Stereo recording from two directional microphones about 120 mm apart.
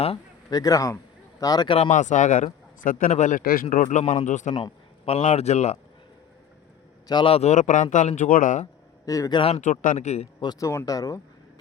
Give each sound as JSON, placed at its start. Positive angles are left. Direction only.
{"t": 0.5, "sound": "speech", "side_deg": 30}
{"t": 1.9, "sound": "speech", "side_deg": 90}
{"t": 4.5, "sound": "speech", "side_deg": 50}
{"t": 7.1, "sound": "speech", "side_deg": 40}
{"t": 7.3, "sound": "speech", "side_deg": 75}
{"t": 9.0, "sound": "speech", "side_deg": 30}
{"t": 9.6, "sound": "speech", "side_deg": 90}
{"t": 10.4, "sound": "speech", "side_deg": 35}